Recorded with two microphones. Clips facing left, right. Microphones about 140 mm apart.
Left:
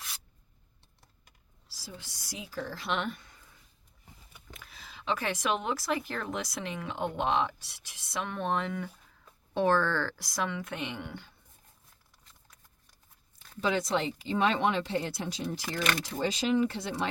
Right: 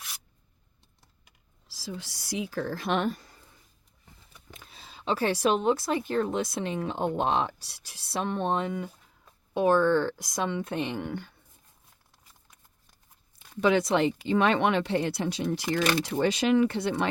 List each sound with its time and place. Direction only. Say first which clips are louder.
1.6 s a woman's voice: right 8 dB; 90° right; by 3.3 s 40° right (ahead or behind)
4.5 s speech: right 1 dB; 25° right (ahead or behind); by 11.3 s 50° right (ahead or behind)
13.6 s speech: right 6 dB; 65° right (ahead or behind)
15.8 s speech: right 4 dB; 30° right (ahead or behind)
16.0 s speech: right 5 dB; 65° right (ahead or behind)